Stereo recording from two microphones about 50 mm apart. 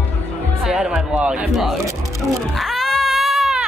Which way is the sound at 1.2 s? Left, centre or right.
Right.